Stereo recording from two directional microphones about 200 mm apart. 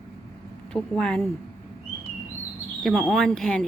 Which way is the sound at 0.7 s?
5° left (ahead or behind).